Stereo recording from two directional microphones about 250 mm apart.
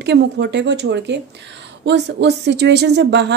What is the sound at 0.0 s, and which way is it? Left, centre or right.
Speech, right.